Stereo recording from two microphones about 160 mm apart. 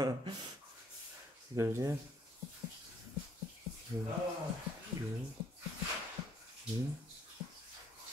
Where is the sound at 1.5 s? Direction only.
20° right (ahead or behind).